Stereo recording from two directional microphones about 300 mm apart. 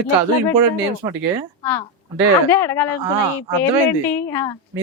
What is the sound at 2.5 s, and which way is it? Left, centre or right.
Speech, centre.